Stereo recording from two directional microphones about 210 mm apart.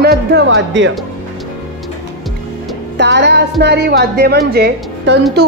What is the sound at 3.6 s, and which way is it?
Speech, 50° right (ahead or behind).